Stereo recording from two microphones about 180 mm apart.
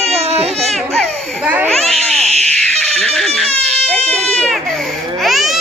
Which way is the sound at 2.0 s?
40° right (ahead or behind).